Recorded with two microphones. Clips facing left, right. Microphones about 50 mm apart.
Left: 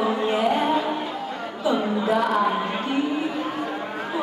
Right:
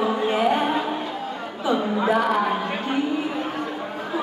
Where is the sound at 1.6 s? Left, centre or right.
Right.